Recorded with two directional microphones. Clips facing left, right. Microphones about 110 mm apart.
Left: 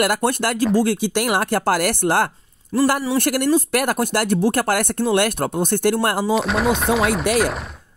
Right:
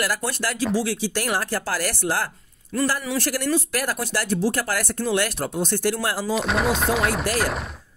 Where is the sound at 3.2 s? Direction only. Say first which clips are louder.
Left 6 dB; 55° left (ahead or behind).